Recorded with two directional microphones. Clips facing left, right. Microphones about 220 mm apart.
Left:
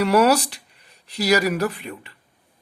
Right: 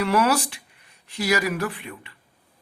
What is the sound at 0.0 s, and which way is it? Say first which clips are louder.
Speech: left 4 dB; 40° left (ahead or behind).